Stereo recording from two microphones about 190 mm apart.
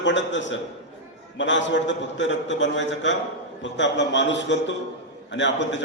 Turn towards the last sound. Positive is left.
turn(degrees=70)  # may be behind; listen again after turning